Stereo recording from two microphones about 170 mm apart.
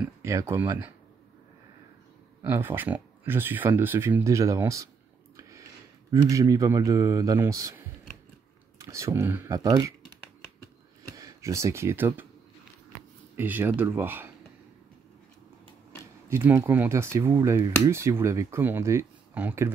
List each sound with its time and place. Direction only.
0.0 s speech: 15° right (ahead or behind)
2.4 s speech: 15° right (ahead or behind)
5.3 s a sound: 20° right (ahead or behind)
6.2 s a man's voice: 20° right (ahead or behind)
11.1 s speech: 20° right (ahead or behind)
13.4 s speech: 10° right (ahead or behind)
16.3 s speech: 15° right (ahead or behind)